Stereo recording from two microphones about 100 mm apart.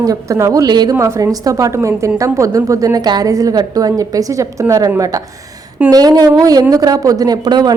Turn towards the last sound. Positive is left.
turn(degrees=-45)  # may be behind; listen again after turning